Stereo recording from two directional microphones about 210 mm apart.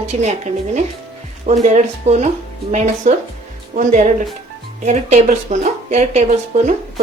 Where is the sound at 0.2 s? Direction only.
30° right (ahead or behind).